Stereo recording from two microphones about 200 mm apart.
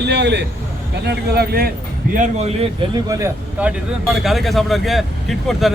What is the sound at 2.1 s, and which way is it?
Speech, 35° right (ahead or behind).